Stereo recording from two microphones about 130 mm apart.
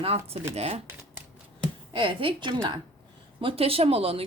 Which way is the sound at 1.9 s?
40° right (ahead or behind).